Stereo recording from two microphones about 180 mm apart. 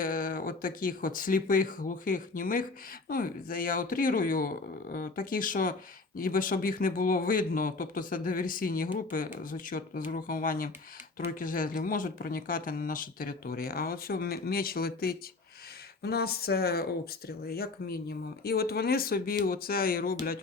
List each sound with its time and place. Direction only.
0.0 s a man's voice: 50° left (ahead or behind)